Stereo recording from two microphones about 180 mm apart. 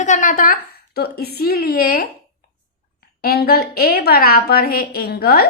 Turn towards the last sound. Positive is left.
turn(degrees=55)  # may be behind; listen again after turning